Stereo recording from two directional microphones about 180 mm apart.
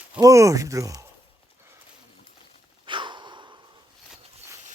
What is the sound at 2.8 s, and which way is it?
Snort, 25° right (ahead or behind).